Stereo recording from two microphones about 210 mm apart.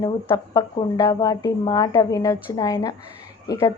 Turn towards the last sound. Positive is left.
turn(degrees=15)  # may be behind; listen again after turning